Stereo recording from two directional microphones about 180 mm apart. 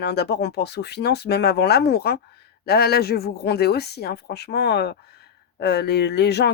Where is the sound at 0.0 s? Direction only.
65° left (ahead or behind).